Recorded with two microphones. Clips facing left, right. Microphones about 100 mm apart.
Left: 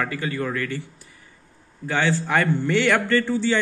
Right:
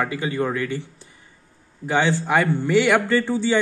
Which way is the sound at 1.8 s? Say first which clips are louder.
Right 2 dB; 20° right (ahead or behind).